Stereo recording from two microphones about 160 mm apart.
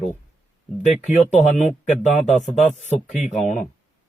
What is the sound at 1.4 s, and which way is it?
Speech, 55° left (ahead or behind).